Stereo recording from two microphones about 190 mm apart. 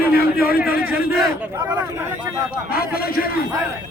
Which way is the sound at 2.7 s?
55° left (ahead or behind).